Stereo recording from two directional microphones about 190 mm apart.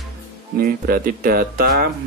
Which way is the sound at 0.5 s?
50° right (ahead or behind).